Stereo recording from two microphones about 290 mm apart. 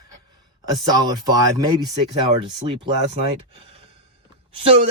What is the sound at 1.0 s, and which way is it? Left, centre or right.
Speech, centre.